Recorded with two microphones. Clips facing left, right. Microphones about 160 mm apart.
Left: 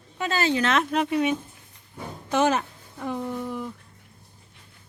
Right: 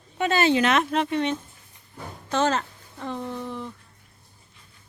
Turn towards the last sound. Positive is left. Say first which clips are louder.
# left 2 dB
turn(degrees=10)  # may be behind; listen again after turning